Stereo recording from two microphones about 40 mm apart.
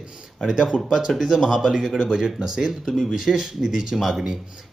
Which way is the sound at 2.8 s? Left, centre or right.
Centre.